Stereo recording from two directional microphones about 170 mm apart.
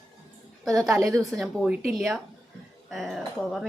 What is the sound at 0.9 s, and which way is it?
Speech, 20° right (ahead or behind).